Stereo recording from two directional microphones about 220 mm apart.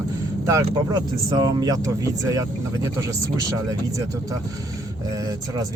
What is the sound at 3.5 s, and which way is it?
Speech, 15° right (ahead or behind).